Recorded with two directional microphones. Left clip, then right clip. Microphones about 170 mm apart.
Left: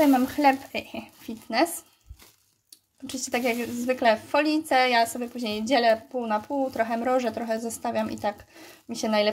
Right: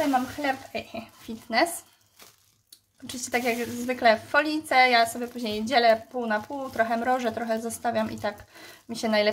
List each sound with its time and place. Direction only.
0.4 s a woman's voice: 35° left (ahead or behind); by 1.7 s 20° left (ahead or behind)
3.1 s a woman's voice: 15° left (ahead or behind)